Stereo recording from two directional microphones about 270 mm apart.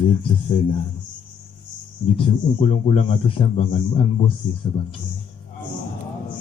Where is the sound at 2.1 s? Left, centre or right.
Left.